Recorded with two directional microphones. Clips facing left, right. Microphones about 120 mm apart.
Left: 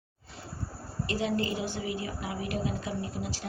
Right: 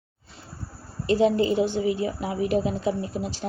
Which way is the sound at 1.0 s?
25° right (ahead or behind).